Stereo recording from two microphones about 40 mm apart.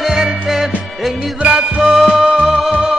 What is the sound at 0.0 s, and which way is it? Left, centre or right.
Music, centre.